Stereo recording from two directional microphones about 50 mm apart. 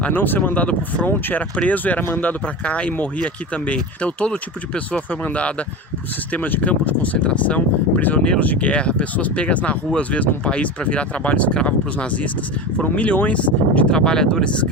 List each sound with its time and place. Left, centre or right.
0.1 s speech: left